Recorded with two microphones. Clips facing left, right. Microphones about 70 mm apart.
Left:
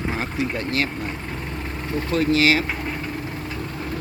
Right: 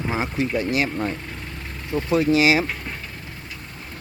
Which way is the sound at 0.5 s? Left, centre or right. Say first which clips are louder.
Right 4 dB; centre.